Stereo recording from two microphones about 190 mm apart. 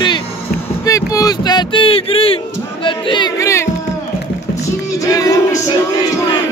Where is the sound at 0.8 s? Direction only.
20° left (ahead or behind).